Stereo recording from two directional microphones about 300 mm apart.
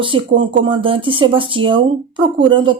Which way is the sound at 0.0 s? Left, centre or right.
Centre.